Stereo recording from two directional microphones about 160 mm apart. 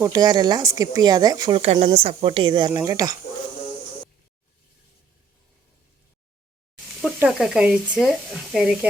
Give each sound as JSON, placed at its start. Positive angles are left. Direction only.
{"t": 0.0, "sound": "speech", "side_deg": -25}
{"t": 1.6, "sound": "speech", "side_deg": -40}
{"t": 7.2, "sound": "speech", "side_deg": -5}